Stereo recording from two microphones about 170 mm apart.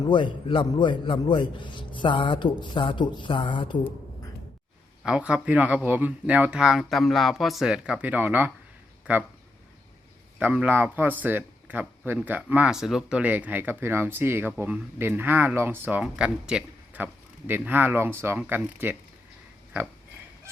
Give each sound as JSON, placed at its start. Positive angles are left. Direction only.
{"t": 0.1, "sound": "a man's voice", "side_deg": 30}
{"t": 5.0, "sound": "speech", "side_deg": -5}
{"t": 10.3, "sound": "speech", "side_deg": -5}